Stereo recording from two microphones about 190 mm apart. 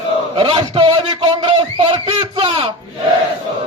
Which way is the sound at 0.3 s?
30° right (ahead or behind).